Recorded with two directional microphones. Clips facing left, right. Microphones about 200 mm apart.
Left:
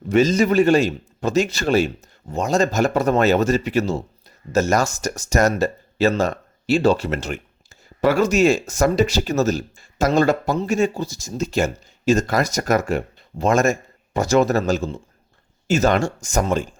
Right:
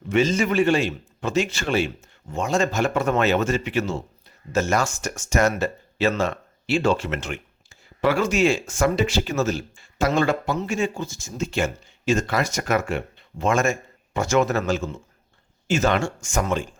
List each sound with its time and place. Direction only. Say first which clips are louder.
0.1 s speech: left 4 dB; 40° left (ahead or behind)